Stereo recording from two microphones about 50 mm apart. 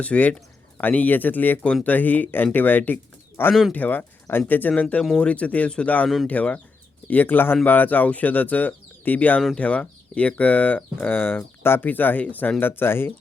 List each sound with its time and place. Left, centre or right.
0.0 s speech: left
7.1 s speech: left